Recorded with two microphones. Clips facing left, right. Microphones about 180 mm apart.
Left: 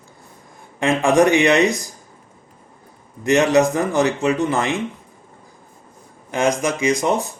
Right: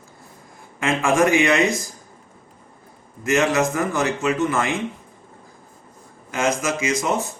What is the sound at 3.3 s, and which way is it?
A man's voice, 35° left (ahead or behind).